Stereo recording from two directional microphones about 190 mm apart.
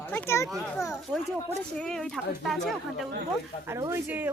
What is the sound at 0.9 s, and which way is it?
Speech, centre (ahead or behind).